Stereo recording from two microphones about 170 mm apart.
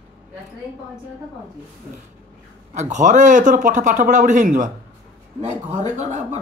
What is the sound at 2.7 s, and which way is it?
Speech, 45° right (ahead or behind).